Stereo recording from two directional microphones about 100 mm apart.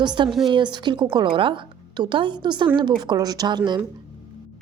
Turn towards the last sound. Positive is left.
turn(degrees=-45)  # may be behind; listen again after turning